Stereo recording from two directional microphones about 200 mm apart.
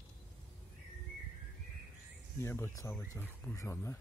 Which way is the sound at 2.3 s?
10° left (ahead or behind).